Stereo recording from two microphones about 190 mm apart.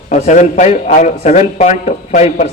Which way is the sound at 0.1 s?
40° left (ahead or behind).